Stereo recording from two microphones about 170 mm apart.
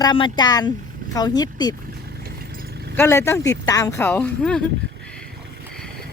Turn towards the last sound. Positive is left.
turn(degrees=5)  # may be behind; listen again after turning